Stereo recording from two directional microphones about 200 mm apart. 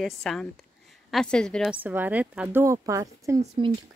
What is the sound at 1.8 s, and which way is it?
A woman's voice, 10° right (ahead or behind).